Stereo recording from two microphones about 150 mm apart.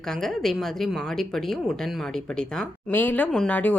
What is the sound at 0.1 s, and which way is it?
A woman's voice, 5° left (ahead or behind).